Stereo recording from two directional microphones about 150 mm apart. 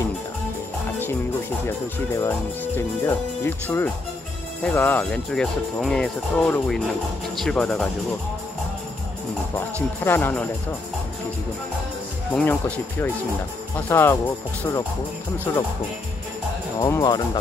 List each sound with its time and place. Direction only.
2.1 s speech: 15° left (ahead or behind)
10.0 s speech: 10° left (ahead or behind)
12.4 s speech: 10° left (ahead or behind)
16.8 s speech: 25° left (ahead or behind)